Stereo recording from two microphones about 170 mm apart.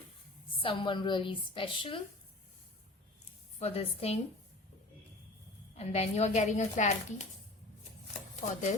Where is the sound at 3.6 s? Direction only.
35° left (ahead or behind).